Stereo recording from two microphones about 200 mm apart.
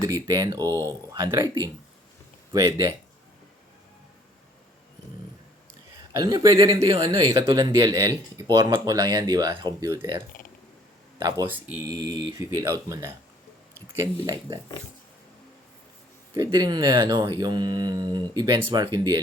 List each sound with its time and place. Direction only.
0.0 s speech: 15° right (ahead or behind)
6.1 s speech: 20° right (ahead or behind)
11.2 s speech: 15° right (ahead or behind)
16.3 s speech: 20° right (ahead or behind)